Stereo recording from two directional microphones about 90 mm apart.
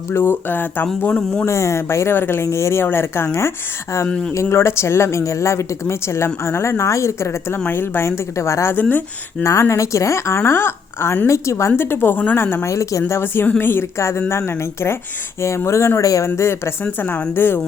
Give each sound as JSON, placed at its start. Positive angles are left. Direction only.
{"t": 0.1, "sound": "speech", "side_deg": 25}
{"t": 1.5, "sound": "speech", "side_deg": 30}
{"t": 4.0, "sound": "speech", "side_deg": 10}
{"t": 4.4, "sound": "a woman's voice", "side_deg": 30}
{"t": 9.4, "sound": "a woman's voice", "side_deg": 35}
{"t": 16.8, "sound": "speech", "side_deg": 20}